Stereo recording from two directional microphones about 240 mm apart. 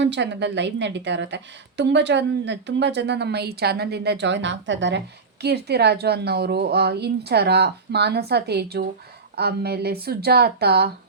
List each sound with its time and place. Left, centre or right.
0.0 s a woman's voice: right